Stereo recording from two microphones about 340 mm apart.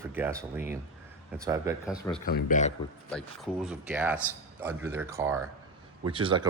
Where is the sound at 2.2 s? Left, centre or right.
Left.